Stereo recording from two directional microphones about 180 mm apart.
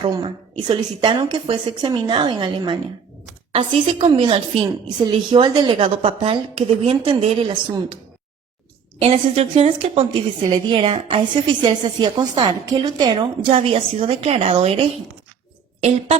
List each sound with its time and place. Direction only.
0.0 s a woman's voice: 25° right (ahead or behind)
9.0 s a woman's voice: 35° right (ahead or behind)